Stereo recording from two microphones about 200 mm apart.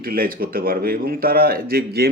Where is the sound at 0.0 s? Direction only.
45° right (ahead or behind).